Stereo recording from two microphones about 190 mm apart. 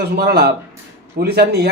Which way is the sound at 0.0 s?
55° right (ahead or behind).